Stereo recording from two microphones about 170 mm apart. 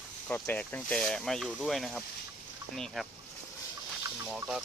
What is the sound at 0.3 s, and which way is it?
Speech, 10° left (ahead or behind).